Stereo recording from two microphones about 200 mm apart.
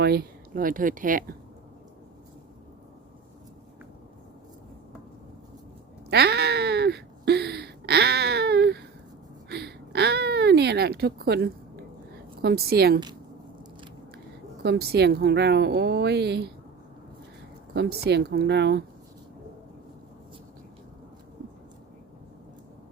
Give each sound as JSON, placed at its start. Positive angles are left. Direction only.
{"t": 0.0, "sound": "speech", "side_deg": -50}
{"t": 6.1, "sound": "a sound", "side_deg": -55}
{"t": 12.4, "sound": "speech", "side_deg": -50}
{"t": 14.6, "sound": "a woman's voice", "side_deg": -55}
{"t": 17.7, "sound": "a woman's voice", "side_deg": -55}